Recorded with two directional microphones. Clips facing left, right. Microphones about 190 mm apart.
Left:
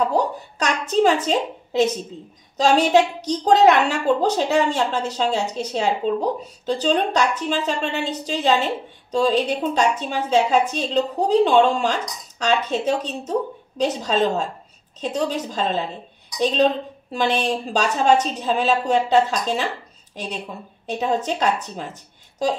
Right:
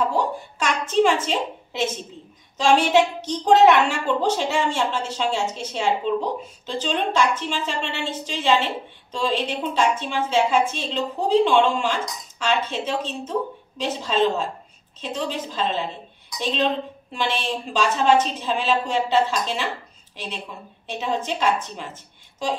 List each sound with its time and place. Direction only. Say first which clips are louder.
0.0 s a woman's voice: left 2 dB; 40° left (ahead or behind)
20.8 s a woman's voice: left 4 dB; 45° left (ahead or behind)